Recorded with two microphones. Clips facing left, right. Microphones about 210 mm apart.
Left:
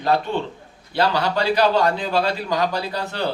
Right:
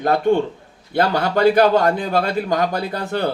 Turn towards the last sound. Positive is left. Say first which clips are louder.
# right 3 dB
turn(degrees=-50)  # may be behind; listen again after turning